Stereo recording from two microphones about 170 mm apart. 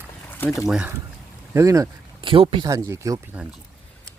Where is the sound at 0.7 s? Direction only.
5° right (ahead or behind).